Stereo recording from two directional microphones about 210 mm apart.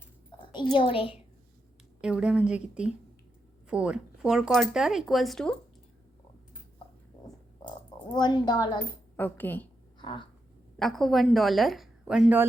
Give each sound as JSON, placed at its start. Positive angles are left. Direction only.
{"t": 0.7, "sound": "a woman's voice", "side_deg": 25}
{"t": 2.0, "sound": "speech", "side_deg": -5}
{"t": 8.1, "sound": "a woman's voice", "side_deg": 20}
{"t": 9.1, "sound": "speech", "side_deg": 10}
{"t": 10.0, "sound": "speech", "side_deg": 20}
{"t": 10.8, "sound": "a woman's voice", "side_deg": 0}